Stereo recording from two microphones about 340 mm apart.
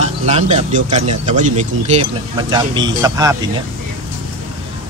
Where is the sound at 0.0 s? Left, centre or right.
Centre.